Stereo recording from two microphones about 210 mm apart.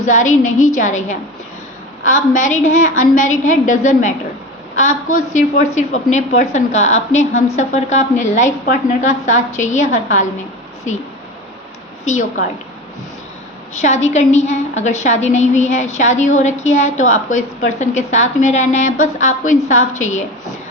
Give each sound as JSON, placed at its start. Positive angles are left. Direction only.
{"t": 0.0, "sound": "a woman's voice", "side_deg": 35}
{"t": 5.3, "sound": "a woman's voice", "side_deg": 40}
{"t": 13.8, "sound": "a woman's voice", "side_deg": 35}